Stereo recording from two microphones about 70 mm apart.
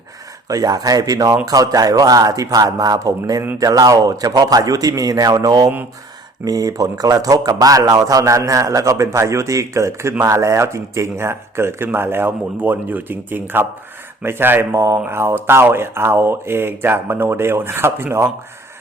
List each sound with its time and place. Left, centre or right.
0.4 s a man's voice: right
14.8 s speech: right
15.0 s speech: right